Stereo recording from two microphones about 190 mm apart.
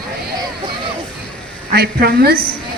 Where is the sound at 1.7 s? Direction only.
55° right (ahead or behind).